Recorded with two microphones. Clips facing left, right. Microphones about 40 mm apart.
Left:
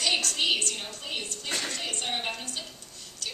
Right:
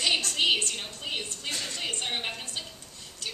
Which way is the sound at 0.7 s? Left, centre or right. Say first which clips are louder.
Right 1 dB; centre.